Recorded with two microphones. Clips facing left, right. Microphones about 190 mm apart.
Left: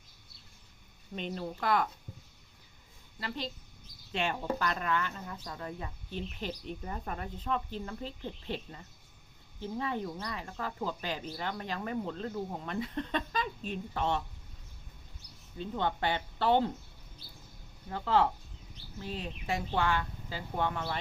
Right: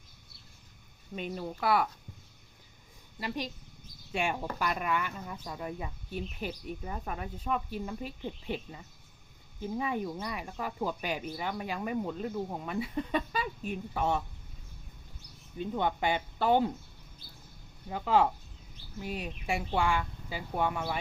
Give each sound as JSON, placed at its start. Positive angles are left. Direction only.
{"t": 1.1, "sound": "speech", "side_deg": -10}
{"t": 3.2, "sound": "speech", "side_deg": -15}
{"t": 15.5, "sound": "speech", "side_deg": -15}
{"t": 17.8, "sound": "speech", "side_deg": -15}